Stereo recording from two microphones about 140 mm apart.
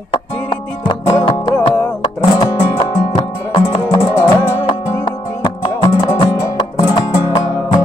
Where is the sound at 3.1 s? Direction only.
40° left (ahead or behind).